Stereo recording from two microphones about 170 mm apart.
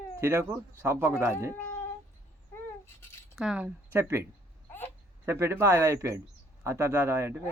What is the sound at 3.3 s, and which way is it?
Speech, 5° right (ahead or behind).